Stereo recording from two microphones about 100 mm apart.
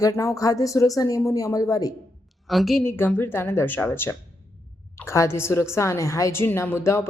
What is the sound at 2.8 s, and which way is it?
A woman's voice, 20° left (ahead or behind).